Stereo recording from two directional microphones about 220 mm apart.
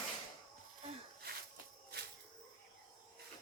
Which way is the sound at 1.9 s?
45° right (ahead or behind).